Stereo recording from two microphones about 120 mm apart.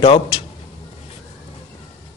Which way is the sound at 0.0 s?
50° left (ahead or behind).